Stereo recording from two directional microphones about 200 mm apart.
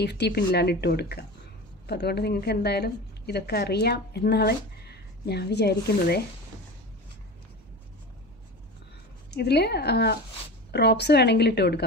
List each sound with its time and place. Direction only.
0.0 s a woman's voice: 55° left (ahead or behind)
9.3 s a woman's voice: 55° left (ahead or behind)